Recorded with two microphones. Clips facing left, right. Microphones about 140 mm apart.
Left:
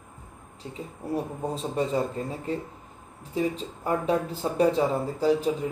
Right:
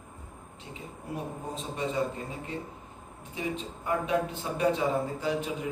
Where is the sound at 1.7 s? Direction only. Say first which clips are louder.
Left 3 dB; 35° left (ahead or behind).